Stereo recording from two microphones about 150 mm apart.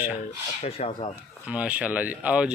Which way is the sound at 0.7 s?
40° left (ahead or behind).